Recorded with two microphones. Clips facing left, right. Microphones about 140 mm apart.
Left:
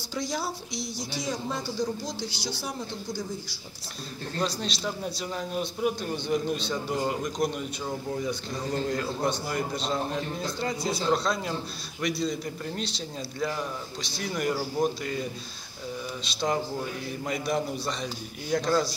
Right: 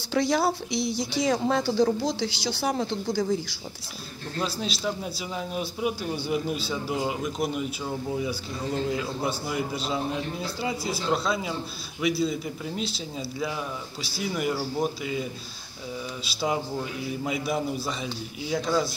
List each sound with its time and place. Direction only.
0.1 s speech: 65° right (ahead or behind)
1.2 s a woman's voice: 75° right (ahead or behind)
4.4 s a man's voice: 5° right (ahead or behind)
16.3 s a man's voice: 5° right (ahead or behind)